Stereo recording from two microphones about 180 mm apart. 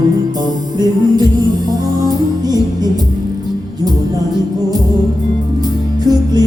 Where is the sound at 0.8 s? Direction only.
20° right (ahead or behind).